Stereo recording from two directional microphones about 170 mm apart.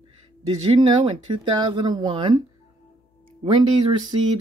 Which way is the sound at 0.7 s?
30° right (ahead or behind).